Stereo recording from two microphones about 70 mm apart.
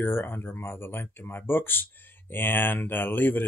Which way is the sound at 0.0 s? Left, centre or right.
Left.